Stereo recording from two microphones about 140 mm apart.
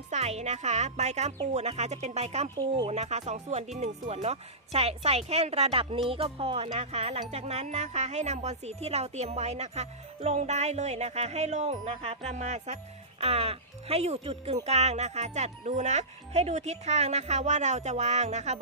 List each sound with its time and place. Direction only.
0.1 s speech: 50° right (ahead or behind)